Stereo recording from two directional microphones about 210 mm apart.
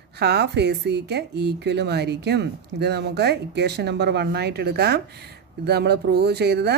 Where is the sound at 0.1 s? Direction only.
50° right (ahead or behind).